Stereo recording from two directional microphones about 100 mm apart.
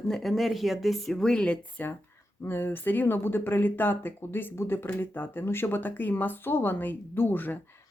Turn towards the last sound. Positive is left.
turn(degrees=20)  # may be behind; listen again after turning